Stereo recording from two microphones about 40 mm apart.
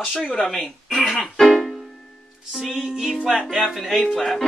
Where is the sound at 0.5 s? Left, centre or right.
Centre.